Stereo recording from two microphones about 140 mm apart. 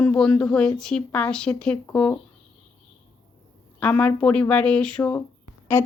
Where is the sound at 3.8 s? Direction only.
10° left (ahead or behind).